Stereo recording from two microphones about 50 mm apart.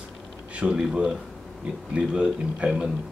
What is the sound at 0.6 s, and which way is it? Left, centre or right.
Speech, centre.